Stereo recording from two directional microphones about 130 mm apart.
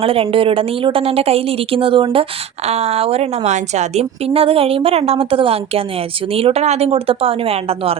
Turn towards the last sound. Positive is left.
turn(degrees=-50)  # may be behind; listen again after turning